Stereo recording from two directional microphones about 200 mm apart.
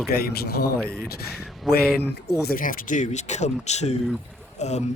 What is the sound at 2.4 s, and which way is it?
Speech, 45° left (ahead or behind).